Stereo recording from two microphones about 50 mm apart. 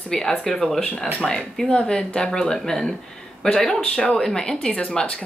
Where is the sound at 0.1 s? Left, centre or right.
Centre.